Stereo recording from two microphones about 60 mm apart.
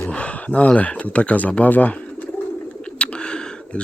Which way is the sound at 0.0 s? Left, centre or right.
Centre.